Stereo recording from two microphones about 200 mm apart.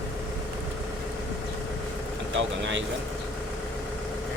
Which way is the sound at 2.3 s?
65° right (ahead or behind).